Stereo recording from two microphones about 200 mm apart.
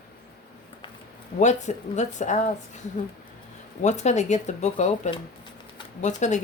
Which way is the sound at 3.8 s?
35° left (ahead or behind).